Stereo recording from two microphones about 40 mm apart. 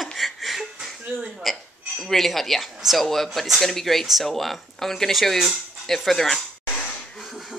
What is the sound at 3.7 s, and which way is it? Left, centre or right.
Speech, centre.